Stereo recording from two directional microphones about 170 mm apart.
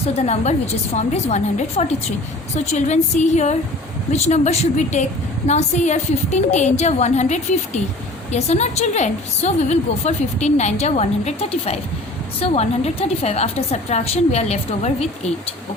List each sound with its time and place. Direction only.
0.3 s a woman's voice: 40° left (ahead or behind)